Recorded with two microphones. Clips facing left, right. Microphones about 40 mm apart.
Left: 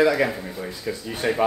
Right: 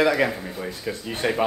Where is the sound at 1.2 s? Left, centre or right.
Centre.